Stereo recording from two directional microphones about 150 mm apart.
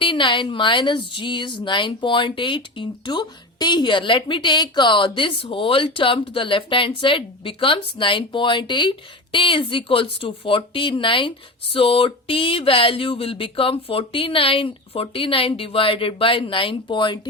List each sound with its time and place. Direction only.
0.0 s speech: 35° left (ahead or behind)